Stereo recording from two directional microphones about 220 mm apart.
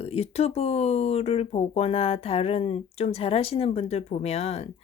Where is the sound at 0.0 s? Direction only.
25° left (ahead or behind).